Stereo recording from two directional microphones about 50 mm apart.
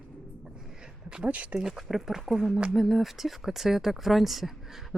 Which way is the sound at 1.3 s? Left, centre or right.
Right.